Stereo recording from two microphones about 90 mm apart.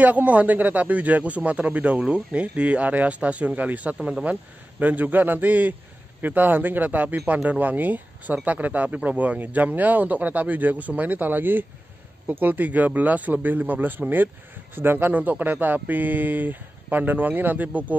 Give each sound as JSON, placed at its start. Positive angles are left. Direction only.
{"t": 0.0, "sound": "speech", "side_deg": -15}